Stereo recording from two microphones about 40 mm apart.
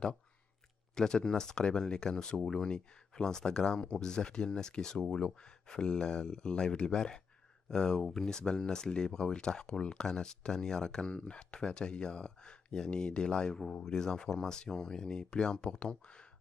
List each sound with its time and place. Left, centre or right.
0.9 s speech: centre